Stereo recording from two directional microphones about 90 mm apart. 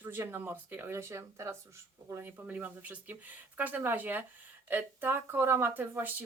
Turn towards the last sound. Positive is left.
turn(degrees=-20)  # may be behind; listen again after turning